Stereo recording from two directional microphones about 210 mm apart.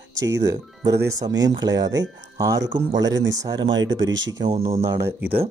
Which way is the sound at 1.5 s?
20° right (ahead or behind).